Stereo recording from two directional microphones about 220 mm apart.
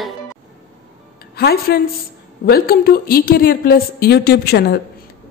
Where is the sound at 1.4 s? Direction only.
45° left (ahead or behind).